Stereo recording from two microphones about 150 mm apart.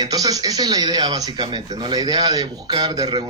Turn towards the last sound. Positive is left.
turn(degrees=-30)  # may be behind; listen again after turning